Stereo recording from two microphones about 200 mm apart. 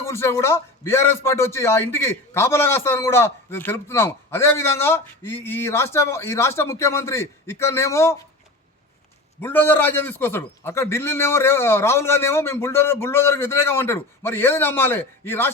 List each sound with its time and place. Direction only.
0.0 s a man's voice: 15° left (ahead or behind)
9.4 s a man's voice: 10° left (ahead or behind)